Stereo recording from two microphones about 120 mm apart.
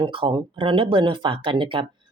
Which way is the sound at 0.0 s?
45° right (ahead or behind).